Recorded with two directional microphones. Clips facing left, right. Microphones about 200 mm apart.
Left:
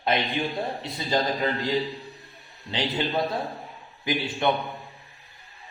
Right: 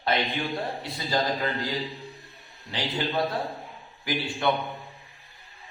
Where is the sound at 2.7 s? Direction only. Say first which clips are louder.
Left 3 dB; 20° left (ahead or behind).